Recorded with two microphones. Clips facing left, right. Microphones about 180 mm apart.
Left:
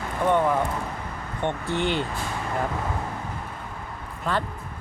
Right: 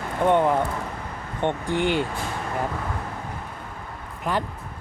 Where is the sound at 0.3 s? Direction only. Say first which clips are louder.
Right 2 dB; 20° right (ahead or behind).